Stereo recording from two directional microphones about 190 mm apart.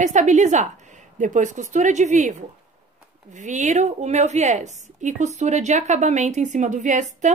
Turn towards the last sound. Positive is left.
turn(degrees=-40)  # may be behind; listen again after turning